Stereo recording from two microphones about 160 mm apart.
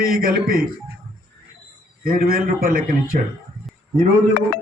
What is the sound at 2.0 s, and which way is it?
A man's voice, 65° right (ahead or behind).